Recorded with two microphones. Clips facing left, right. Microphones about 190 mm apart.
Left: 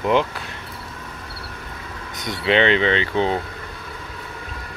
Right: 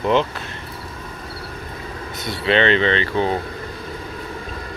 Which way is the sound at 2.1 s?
15° left (ahead or behind).